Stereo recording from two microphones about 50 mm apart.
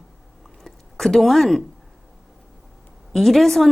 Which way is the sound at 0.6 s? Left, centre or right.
Centre.